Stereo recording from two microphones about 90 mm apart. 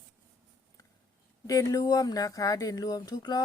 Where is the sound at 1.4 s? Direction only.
40° left (ahead or behind).